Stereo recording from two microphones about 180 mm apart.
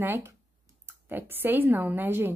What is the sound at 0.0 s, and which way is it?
A woman's voice, 15° right (ahead or behind).